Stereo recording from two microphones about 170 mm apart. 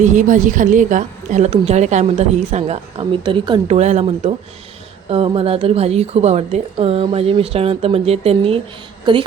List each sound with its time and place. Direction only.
0.0 s a woman's voice: 45° right (ahead or behind); by 3.8 s 30° right (ahead or behind)
3.8 s a woman's voice: 40° right (ahead or behind)